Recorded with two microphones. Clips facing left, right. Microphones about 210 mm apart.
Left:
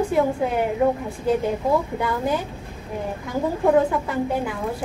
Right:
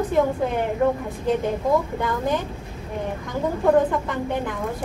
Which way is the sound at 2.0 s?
10° left (ahead or behind).